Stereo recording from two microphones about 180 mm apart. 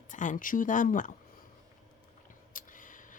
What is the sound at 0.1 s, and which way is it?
Speech, 45° left (ahead or behind).